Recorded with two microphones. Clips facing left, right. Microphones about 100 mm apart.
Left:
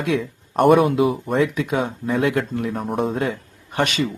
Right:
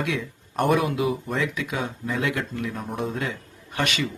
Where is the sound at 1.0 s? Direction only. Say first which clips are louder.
Left 6 dB; 35° left (ahead or behind).